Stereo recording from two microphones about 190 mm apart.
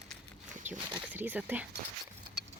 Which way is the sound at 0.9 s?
10° right (ahead or behind).